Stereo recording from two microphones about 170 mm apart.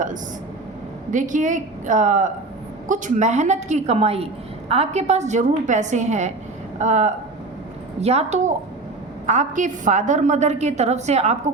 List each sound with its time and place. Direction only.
1.1 s a woman's voice: 50° right (ahead or behind)